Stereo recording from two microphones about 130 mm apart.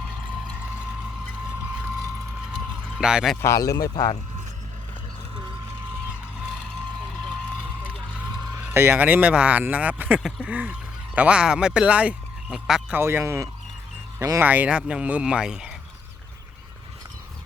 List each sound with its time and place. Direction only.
3.0 s speech: 5° right (ahead or behind)
3.4 s speech: 25° left (ahead or behind)
8.5 s speech: 15° right (ahead or behind)
13.0 s fowl: 20° right (ahead or behind)
14.2 s speech: 20° right (ahead or behind); by 15.7 s 5° right (ahead or behind)